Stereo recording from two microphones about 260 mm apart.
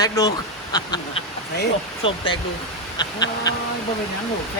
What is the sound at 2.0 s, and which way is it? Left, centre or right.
Speech, centre.